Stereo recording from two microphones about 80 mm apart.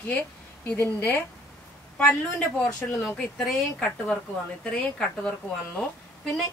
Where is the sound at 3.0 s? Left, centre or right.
Centre.